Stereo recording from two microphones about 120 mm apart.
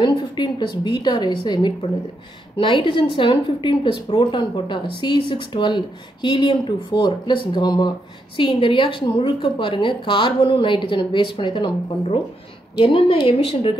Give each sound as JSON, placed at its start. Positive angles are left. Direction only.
{"t": 0.0, "sound": "a woman's voice", "side_deg": 40}